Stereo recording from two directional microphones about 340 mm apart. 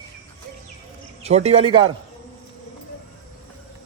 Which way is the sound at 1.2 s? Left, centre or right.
Centre.